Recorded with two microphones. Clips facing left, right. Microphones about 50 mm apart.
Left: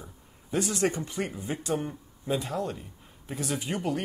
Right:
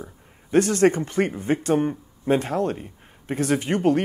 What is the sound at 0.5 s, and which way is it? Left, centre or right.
Speech, right.